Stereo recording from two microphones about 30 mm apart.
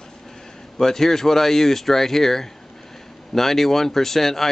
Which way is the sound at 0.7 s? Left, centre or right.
Centre.